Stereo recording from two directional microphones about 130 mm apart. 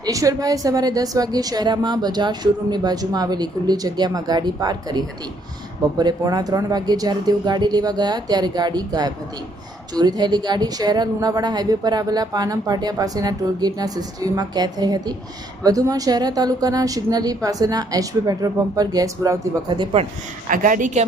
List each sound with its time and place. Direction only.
0.0 s a woman's voice: 25° right (ahead or behind)
20.5 s a woman's voice: 90° right